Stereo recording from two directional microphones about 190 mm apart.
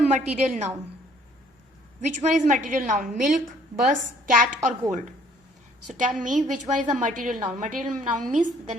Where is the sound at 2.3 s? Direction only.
40° right (ahead or behind).